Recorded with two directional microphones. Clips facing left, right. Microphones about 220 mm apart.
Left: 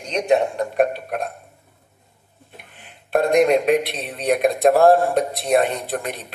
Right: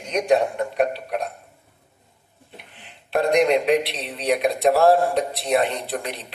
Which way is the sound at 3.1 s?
50° left (ahead or behind).